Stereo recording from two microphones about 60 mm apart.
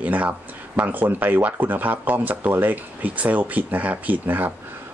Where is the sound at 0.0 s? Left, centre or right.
Right.